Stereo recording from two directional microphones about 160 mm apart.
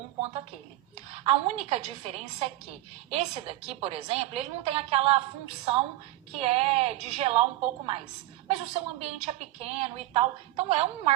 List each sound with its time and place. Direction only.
1.1 s a woman's voice: 40° right (ahead or behind)